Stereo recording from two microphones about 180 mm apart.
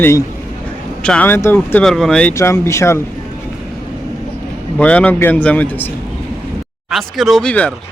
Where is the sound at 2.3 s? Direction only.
15° left (ahead or behind).